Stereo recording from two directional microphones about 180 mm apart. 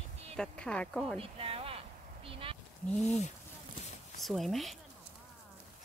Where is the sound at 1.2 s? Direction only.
30° right (ahead or behind).